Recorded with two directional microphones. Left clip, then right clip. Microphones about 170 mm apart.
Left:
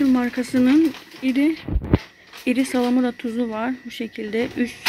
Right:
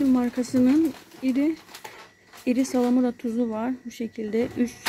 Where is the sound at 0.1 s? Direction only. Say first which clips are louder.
Left 3 dB; 10° right (ahead or behind).